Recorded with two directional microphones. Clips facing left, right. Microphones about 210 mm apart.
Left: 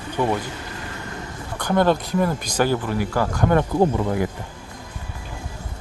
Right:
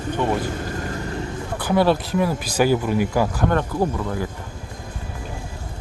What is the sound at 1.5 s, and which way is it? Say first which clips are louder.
Speech: even; 5° right (ahead or behind).